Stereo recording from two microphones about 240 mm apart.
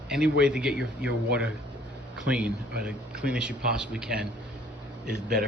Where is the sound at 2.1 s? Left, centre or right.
Centre.